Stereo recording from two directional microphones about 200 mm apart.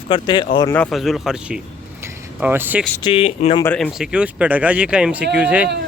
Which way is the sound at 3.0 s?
25° left (ahead or behind).